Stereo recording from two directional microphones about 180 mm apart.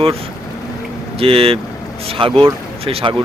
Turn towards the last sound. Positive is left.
turn(degrees=-30)  # may be behind; listen again after turning